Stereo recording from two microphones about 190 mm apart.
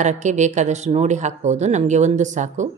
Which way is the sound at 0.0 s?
40° right (ahead or behind).